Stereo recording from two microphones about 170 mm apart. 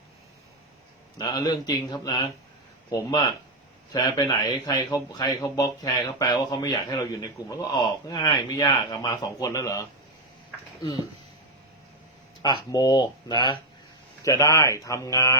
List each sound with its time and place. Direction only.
1.2 s speech: 25° left (ahead or behind)
12.4 s speech: 25° left (ahead or behind)